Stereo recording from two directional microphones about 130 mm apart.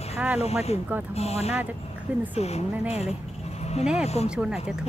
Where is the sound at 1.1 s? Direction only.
55° left (ahead or behind).